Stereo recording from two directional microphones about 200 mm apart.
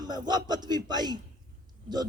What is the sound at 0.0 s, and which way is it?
Speech, 20° right (ahead or behind).